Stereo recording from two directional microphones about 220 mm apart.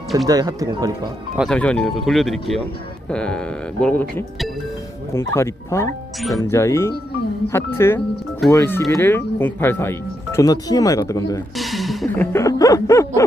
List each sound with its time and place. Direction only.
0.3 s speech: 15° right (ahead or behind)
1.4 s speech: 5° left (ahead or behind)
5.1 s speech: 10° left (ahead or behind)
11.5 s music: centre (ahead or behind)